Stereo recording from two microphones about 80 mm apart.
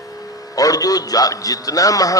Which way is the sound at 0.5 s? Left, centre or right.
Left.